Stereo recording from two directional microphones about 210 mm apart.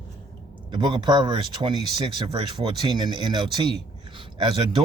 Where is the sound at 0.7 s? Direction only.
20° right (ahead or behind).